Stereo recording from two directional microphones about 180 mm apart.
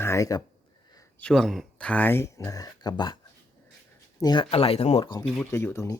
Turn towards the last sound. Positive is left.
turn(degrees=15)  # may be behind; listen again after turning